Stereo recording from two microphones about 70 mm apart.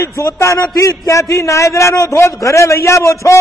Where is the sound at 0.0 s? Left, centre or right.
Left.